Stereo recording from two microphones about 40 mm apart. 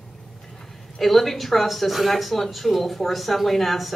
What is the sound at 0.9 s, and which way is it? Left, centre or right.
Speech, centre.